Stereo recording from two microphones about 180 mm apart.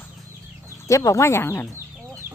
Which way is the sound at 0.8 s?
15° left (ahead or behind).